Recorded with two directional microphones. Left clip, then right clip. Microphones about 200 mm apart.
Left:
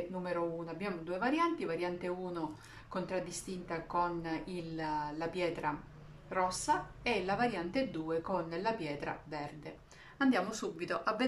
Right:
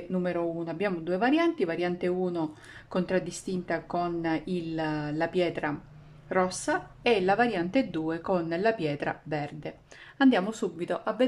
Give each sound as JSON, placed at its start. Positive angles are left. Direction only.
{"t": 0.2, "sound": "a woman's voice", "side_deg": -50}